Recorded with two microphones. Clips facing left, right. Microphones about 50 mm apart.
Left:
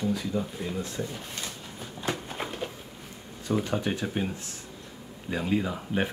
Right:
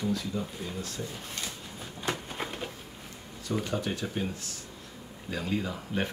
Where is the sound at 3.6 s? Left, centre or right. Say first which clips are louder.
Left 3 dB; left.